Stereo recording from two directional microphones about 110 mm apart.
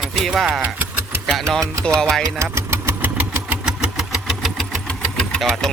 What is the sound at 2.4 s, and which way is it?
Engine, 25° right (ahead or behind).